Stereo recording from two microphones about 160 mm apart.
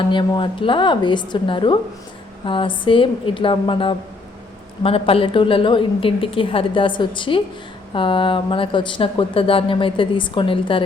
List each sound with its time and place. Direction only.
0.0 s speech: 30° left (ahead or behind)